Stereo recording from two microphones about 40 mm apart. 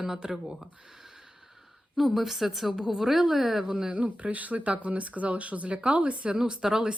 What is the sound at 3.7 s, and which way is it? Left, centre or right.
Speech, right.